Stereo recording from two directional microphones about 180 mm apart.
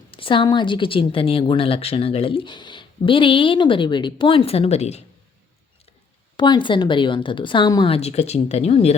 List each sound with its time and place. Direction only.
0.1 s speech: 30° left (ahead or behind)
6.3 s speech: 25° left (ahead or behind)